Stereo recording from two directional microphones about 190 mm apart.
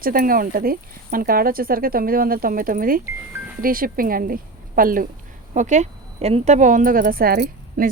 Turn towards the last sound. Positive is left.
turn(degrees=-50)  # may be behind; listen again after turning